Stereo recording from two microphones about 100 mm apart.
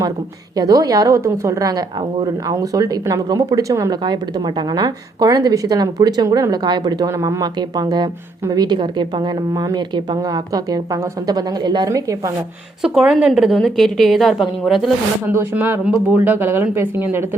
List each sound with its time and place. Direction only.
0.5 s a woman's voice: 40° right (ahead or behind)
4.0 s a woman's voice: 45° right (ahead or behind)
9.5 s a woman's voice: 35° right (ahead or behind)
11.9 s a woman's voice: 35° right (ahead or behind)
12.8 s a woman's voice: 5° right (ahead or behind)
15.3 s speech: 20° right (ahead or behind)